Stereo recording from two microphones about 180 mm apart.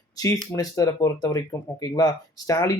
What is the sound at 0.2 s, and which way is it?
Speech, 20° left (ahead or behind).